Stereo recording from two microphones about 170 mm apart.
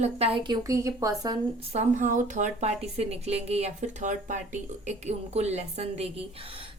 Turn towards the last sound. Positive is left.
turn(degrees=-35)  # may be behind; listen again after turning